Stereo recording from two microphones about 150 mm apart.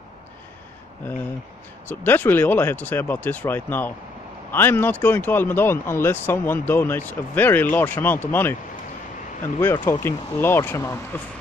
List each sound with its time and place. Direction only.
1.9 s speech: 15° left (ahead or behind)
9.6 s speech: 15° left (ahead or behind)